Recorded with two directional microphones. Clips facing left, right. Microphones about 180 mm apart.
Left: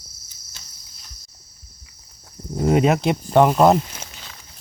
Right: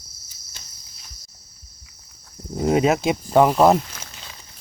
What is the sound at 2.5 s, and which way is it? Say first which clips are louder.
Speech: left 1 dB; centre (ahead or behind).